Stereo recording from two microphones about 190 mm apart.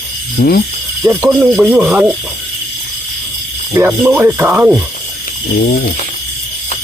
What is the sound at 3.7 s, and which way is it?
Speech, 10° right (ahead or behind).